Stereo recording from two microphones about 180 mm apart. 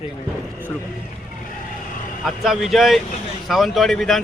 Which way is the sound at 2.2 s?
Centre (ahead or behind).